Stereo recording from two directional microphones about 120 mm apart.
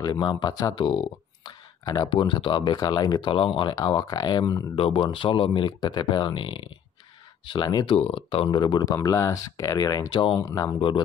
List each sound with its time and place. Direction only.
0.0 s speech: 40° left (ahead or behind)
4.7 s speech: 45° left (ahead or behind)
7.8 s speech: 50° left (ahead or behind)